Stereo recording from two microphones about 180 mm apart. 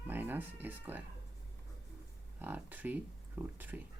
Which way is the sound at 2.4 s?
10° right (ahead or behind).